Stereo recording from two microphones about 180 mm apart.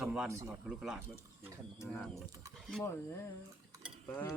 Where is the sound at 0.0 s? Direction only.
5° right (ahead or behind).